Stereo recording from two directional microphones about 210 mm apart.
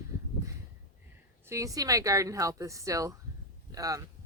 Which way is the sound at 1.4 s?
15° right (ahead or behind).